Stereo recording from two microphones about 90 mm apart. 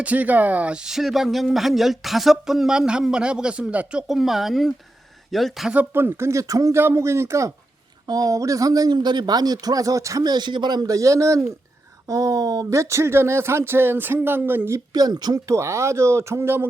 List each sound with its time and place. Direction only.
0.0 s speech: 15° right (ahead or behind)
4.1 s speech: centre (ahead or behind)
5.7 s speech: 20° right (ahead or behind); by 6.7 s 40° right (ahead or behind)
6.7 s speech: 30° right (ahead or behind)
8.0 s speech: 45° right (ahead or behind); by 14.8 s 25° right (ahead or behind)
14.9 s speech: 45° right (ahead or behind)
15.5 s speech: 30° right (ahead or behind)